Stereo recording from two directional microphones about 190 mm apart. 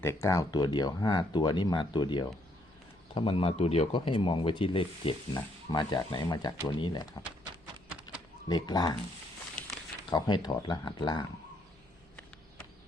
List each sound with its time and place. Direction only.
0.0 s speech: 15° left (ahead or behind)
8.4 s speech: 20° left (ahead or behind)
10.1 s speech: 20° left (ahead or behind)